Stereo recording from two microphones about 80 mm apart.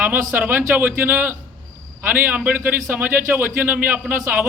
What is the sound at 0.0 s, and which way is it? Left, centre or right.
A man's voice, right.